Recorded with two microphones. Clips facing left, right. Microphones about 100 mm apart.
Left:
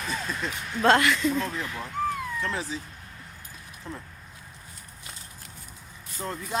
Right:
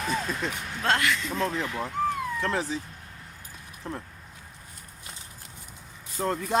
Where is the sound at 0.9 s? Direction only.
25° left (ahead or behind).